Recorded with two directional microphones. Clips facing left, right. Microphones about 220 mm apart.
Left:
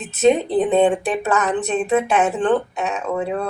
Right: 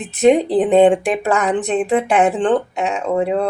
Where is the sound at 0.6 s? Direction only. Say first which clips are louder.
Right 4 dB; 15° right (ahead or behind).